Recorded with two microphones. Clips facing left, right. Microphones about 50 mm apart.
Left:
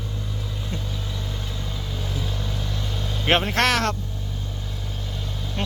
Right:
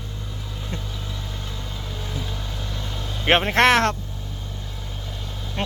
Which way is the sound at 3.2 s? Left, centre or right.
Centre.